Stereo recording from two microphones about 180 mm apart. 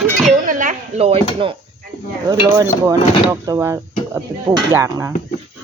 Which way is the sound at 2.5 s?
20° right (ahead or behind).